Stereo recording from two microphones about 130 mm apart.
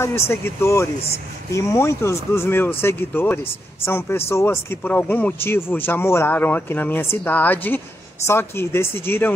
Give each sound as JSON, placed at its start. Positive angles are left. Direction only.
{"t": 0.0, "sound": "speech", "side_deg": 20}